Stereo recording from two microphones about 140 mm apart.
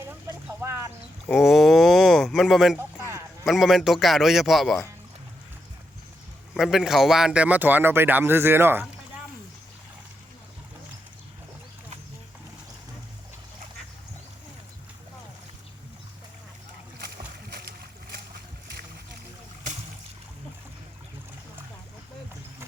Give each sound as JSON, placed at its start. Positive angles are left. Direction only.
{"t": 0.0, "sound": "a sound", "side_deg": -15}
{"t": 1.3, "sound": "a man's voice", "side_deg": 0}
{"t": 6.5, "sound": "speech", "side_deg": 0}